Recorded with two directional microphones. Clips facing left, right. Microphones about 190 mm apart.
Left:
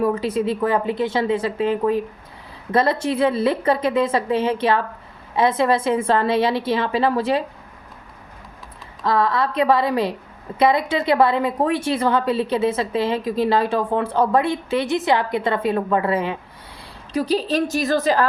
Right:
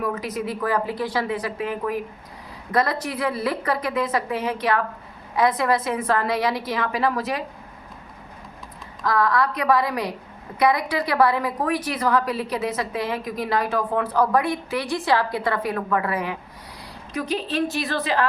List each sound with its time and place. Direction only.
0.0 s a woman's voice: 30° left (ahead or behind)
9.0 s a woman's voice: 25° left (ahead or behind); by 18.3 s 40° left (ahead or behind)